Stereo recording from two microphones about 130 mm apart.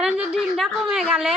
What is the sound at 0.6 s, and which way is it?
Speech, 5° right (ahead or behind).